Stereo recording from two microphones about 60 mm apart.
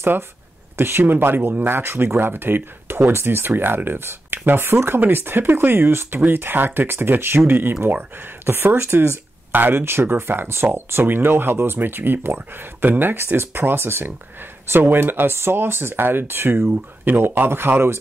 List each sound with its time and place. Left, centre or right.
0.7 s speech: right